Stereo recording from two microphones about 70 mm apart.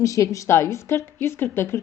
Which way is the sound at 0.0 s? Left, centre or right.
Left.